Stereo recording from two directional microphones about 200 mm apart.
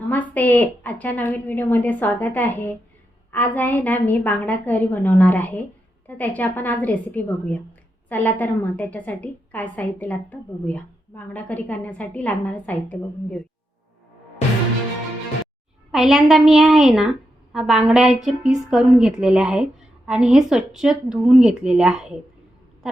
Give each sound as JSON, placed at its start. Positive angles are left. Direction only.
{"t": 0.1, "sound": "a woman's voice", "side_deg": 10}
{"t": 15.9, "sound": "a woman's voice", "side_deg": 0}